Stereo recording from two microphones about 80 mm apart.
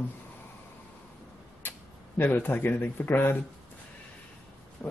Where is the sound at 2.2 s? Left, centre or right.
Left.